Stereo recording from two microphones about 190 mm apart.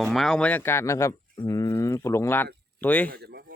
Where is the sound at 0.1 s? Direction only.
Centre (ahead or behind).